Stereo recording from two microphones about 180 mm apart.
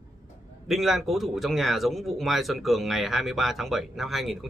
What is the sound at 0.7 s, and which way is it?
Speech, centre (ahead or behind).